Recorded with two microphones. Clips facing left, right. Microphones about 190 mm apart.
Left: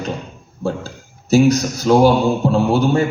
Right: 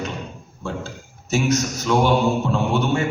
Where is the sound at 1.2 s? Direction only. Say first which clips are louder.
Left 8 dB; 35° left (ahead or behind).